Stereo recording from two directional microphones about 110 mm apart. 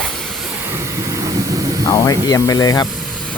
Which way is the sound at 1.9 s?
35° left (ahead or behind).